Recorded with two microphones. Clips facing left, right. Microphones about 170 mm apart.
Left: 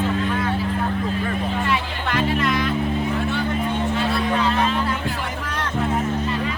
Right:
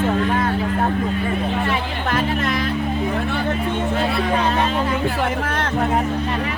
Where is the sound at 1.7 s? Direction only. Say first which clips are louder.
Right 2 dB; 45° right (ahead or behind).